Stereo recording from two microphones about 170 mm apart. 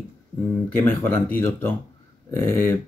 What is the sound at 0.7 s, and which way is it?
Speech, 10° left (ahead or behind).